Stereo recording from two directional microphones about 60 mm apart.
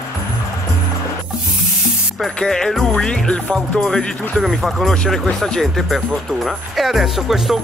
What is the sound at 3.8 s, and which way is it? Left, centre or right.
Speech, centre.